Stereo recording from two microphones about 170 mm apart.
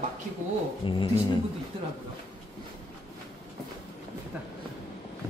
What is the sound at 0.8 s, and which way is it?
Speech, 30° left (ahead or behind).